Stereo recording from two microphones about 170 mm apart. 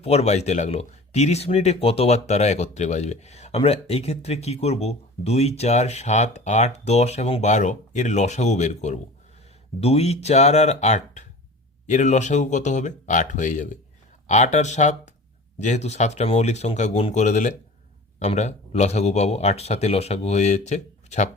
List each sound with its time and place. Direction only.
0.0 s speech: 40° left (ahead or behind)